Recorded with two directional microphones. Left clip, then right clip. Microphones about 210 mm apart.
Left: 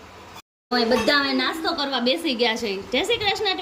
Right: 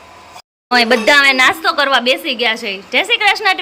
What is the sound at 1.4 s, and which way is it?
Speech, 30° right (ahead or behind).